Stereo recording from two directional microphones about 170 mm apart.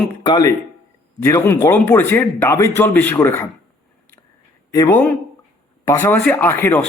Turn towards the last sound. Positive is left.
turn(degrees=15)  # may be behind; listen again after turning